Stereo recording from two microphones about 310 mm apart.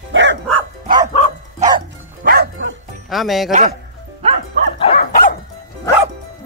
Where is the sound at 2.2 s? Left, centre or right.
Right.